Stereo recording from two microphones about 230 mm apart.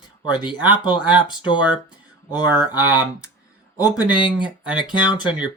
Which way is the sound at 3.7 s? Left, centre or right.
Centre.